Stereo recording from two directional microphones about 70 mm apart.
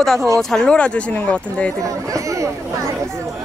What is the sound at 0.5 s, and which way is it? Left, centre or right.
Speech, centre.